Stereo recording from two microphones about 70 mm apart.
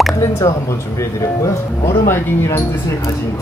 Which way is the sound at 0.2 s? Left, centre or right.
Left.